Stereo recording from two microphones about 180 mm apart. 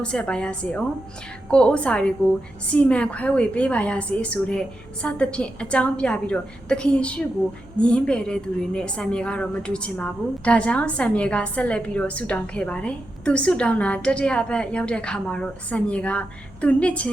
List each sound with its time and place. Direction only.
0.0 s a woman's voice: 5° left (ahead or behind)